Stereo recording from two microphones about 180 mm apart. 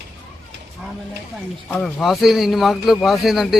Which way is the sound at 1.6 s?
5° left (ahead or behind).